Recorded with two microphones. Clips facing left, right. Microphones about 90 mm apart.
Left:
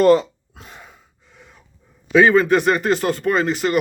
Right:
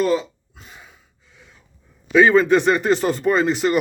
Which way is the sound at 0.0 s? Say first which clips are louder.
Left 6 dB; 65° left (ahead or behind).